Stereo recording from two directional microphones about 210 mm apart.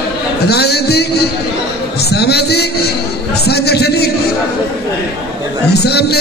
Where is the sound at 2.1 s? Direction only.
50° left (ahead or behind).